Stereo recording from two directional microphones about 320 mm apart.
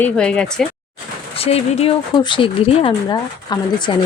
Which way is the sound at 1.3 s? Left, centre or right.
Centre.